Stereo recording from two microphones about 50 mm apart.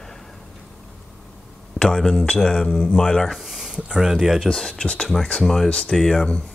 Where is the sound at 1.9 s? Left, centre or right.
Centre.